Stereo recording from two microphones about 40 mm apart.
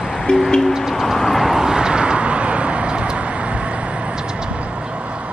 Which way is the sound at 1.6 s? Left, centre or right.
Centre.